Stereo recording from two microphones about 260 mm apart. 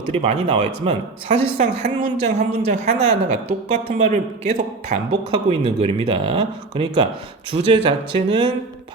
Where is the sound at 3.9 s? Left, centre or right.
Right.